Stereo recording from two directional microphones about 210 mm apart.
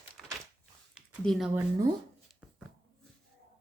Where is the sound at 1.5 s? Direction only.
15° right (ahead or behind).